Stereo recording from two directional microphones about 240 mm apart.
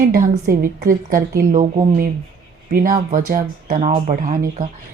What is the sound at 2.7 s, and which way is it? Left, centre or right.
A woman's voice, right.